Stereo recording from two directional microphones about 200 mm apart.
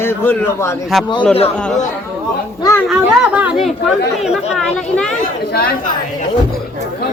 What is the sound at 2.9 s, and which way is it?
A man's voice, 5° right (ahead or behind).